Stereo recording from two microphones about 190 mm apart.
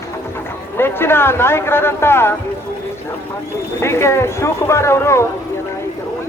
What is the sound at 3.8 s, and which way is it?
A man's voice, 15° left (ahead or behind).